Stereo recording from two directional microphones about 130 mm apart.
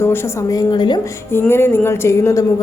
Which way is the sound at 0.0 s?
20° left (ahead or behind).